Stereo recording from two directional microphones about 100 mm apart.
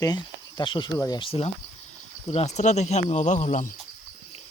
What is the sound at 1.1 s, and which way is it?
Speech, 75° left (ahead or behind).